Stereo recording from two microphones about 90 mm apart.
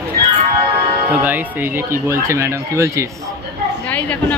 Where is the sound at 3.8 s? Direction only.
15° left (ahead or behind).